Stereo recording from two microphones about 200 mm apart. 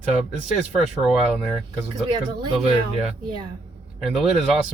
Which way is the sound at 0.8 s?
Centre (ahead or behind).